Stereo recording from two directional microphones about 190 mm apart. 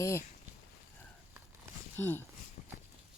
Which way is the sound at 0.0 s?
15° left (ahead or behind).